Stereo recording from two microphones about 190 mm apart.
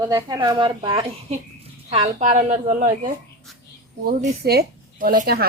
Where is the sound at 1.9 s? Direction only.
40° right (ahead or behind).